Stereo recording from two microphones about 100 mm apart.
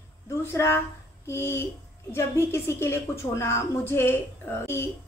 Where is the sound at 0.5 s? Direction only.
25° left (ahead or behind).